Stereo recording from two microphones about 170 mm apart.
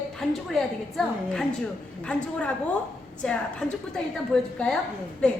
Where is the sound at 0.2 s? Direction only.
Centre (ahead or behind).